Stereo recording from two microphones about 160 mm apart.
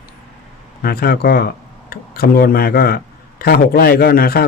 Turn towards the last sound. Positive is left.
turn(degrees=70)  # may be behind; listen again after turning